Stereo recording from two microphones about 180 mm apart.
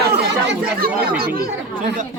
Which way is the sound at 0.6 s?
55° right (ahead or behind).